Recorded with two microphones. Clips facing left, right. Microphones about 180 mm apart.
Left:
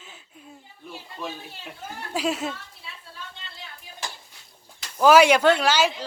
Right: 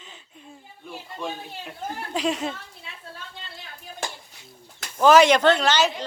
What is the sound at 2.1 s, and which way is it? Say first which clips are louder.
Speech: even; 5° left (ahead or behind).